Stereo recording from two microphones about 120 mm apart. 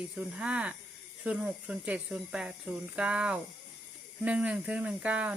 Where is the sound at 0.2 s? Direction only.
10° right (ahead or behind).